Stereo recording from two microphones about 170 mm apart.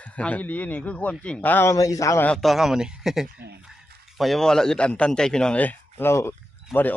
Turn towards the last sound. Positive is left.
turn(degrees=10)  # may be behind; listen again after turning